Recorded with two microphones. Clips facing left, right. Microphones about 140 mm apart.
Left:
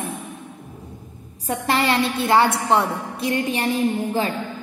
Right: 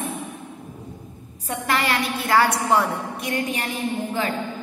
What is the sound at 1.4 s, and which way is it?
A woman's voice, 35° left (ahead or behind).